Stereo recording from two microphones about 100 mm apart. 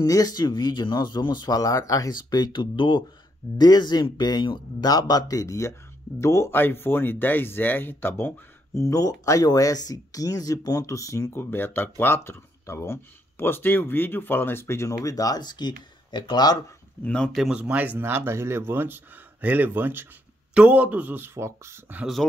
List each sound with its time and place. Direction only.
0.0 s speech: 40° left (ahead or behind)
17.0 s speech: 10° left (ahead or behind)
17.3 s speech: 5° right (ahead or behind); by 21.9 s 30° right (ahead or behind)